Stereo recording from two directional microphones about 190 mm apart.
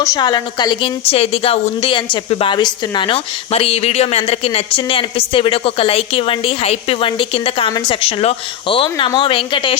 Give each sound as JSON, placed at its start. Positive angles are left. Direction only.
{"t": 0.0, "sound": "a woman's voice", "side_deg": 20}